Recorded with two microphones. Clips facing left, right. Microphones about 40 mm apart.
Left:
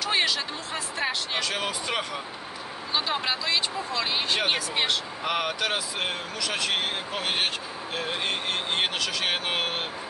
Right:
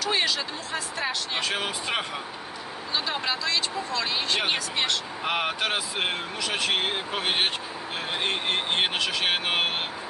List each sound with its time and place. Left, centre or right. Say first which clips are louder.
0.0 s a sound: even; centre
1.4 s speech: right 1 dB; right
2.9 s speech: left 1 dB; centre
5.2 s speech: right 1 dB; right